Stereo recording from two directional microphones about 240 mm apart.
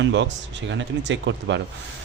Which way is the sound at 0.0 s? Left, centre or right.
Right.